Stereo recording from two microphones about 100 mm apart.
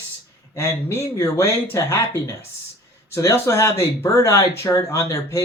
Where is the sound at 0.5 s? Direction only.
25° left (ahead or behind).